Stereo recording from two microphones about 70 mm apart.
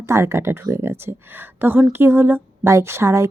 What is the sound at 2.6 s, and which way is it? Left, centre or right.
Speech, right.